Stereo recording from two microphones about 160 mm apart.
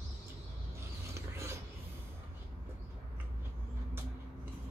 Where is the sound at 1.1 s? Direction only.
15° right (ahead or behind).